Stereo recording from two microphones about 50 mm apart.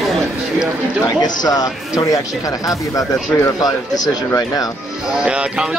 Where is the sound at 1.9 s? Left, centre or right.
Left.